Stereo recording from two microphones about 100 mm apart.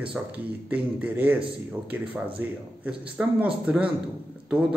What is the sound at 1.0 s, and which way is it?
A man's voice, 15° right (ahead or behind).